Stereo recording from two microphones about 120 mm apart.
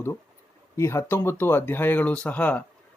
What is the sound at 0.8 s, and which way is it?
A man's voice, 20° left (ahead or behind).